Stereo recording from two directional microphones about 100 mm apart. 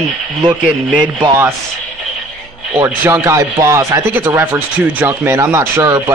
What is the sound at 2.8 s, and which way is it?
A man's voice, 25° right (ahead or behind).